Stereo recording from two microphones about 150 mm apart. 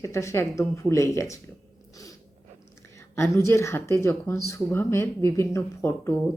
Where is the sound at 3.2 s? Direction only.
20° left (ahead or behind).